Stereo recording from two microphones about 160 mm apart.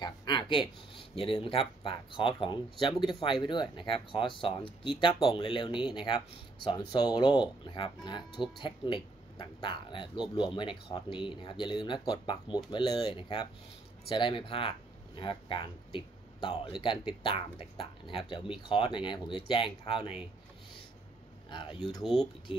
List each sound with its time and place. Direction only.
0.0 s speech: 25° left (ahead or behind)
21.5 s speech: 30° left (ahead or behind)
22.0 s speech: 5° left (ahead or behind)